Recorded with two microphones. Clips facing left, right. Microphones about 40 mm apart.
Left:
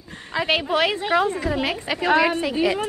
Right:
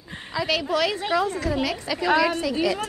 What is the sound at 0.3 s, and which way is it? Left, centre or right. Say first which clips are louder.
A woman's voice: left 3 dB; left.